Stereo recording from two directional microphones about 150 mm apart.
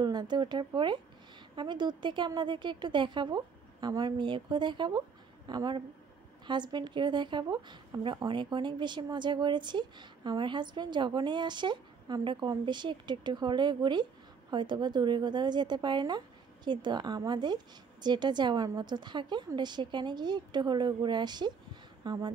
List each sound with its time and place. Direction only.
0.0 s a woman's voice: 30° right (ahead or behind)